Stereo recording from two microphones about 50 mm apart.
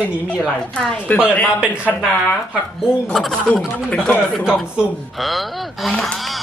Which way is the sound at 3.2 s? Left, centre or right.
Centre.